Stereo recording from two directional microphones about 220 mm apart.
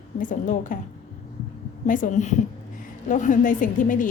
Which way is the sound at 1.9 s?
35° left (ahead or behind).